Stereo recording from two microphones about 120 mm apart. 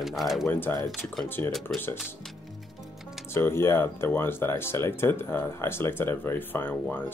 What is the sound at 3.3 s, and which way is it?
Speech, 20° left (ahead or behind).